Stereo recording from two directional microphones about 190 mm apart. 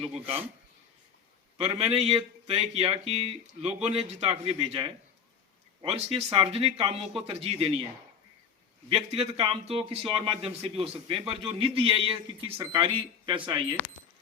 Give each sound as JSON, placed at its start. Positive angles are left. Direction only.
{"t": 0.0, "sound": "speech", "side_deg": -30}
{"t": 1.5, "sound": "a man's voice", "side_deg": -35}
{"t": 8.9, "sound": "a man's voice", "side_deg": -30}